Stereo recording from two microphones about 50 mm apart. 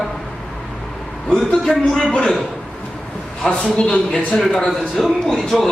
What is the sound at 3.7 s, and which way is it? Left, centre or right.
Speech, left.